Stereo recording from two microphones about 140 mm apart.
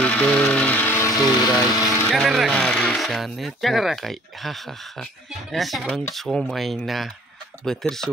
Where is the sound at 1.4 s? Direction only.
25° left (ahead or behind).